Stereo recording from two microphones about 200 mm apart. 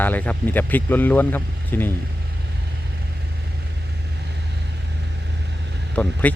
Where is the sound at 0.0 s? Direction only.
10° left (ahead or behind).